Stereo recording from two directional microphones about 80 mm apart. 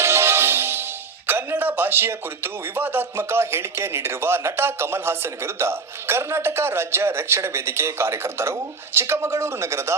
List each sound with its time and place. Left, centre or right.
0.0 s music: right
1.3 s speech: right